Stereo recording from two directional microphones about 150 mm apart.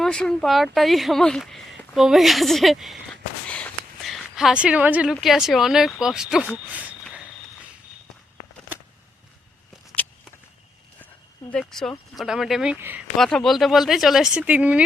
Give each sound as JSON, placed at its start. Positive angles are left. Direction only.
{"t": 0.0, "sound": "speech", "side_deg": 5}
{"t": 11.5, "sound": "speech", "side_deg": 5}
{"t": 13.1, "sound": "speech", "side_deg": 0}